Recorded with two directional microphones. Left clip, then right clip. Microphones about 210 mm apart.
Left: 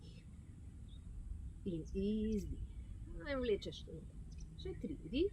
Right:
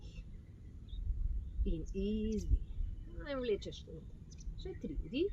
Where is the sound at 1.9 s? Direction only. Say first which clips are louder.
Right 1 dB; 15° left (ahead or behind).